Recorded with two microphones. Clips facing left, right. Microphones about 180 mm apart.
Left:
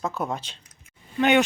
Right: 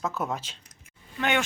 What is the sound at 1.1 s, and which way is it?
Speech, 20° left (ahead or behind).